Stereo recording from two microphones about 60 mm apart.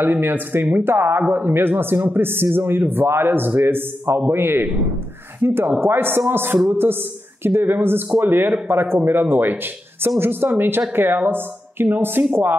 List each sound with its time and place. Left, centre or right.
0.0 s speech: right